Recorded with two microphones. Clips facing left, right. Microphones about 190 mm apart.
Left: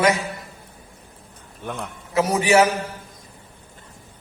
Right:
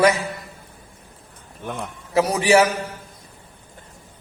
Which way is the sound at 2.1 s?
35° right (ahead or behind).